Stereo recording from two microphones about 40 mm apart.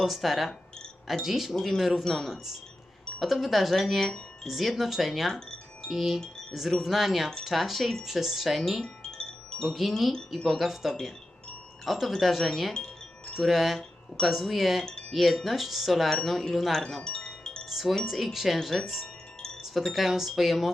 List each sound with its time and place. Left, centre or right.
0.0 s speech: centre
8.8 s wind chime: centre
9.6 s speech: centre
10.1 s speech: centre
10.6 s speech: centre
17.1 s chime: left
17.7 s chime: centre
18.0 s speech: centre